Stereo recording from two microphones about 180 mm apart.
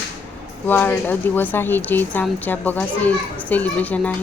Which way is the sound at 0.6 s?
10° left (ahead or behind).